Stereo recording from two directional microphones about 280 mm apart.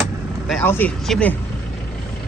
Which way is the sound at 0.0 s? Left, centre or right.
Centre.